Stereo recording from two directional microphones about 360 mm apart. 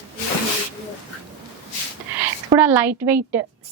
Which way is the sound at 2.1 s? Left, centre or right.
Centre.